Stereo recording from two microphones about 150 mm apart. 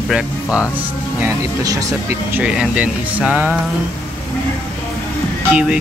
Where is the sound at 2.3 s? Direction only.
5° right (ahead or behind).